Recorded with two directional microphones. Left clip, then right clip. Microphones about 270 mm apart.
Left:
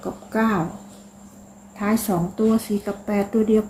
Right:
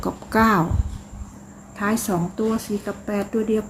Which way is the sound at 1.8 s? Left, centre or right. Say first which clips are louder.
Even; centre.